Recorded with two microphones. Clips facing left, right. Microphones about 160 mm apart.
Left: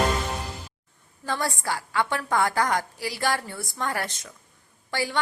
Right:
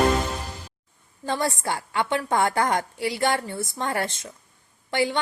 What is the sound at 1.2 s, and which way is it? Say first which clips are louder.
A woman's voice: right 3 dB; 20° right (ahead or behind).